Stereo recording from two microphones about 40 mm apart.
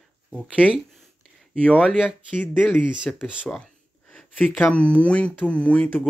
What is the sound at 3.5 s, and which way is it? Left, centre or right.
Speech, centre.